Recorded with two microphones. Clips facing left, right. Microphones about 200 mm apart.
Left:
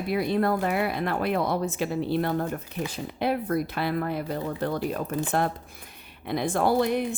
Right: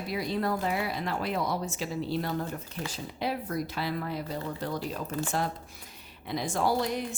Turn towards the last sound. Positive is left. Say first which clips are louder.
# left 5 dB
turn(degrees=60)  # may be behind; listen again after turning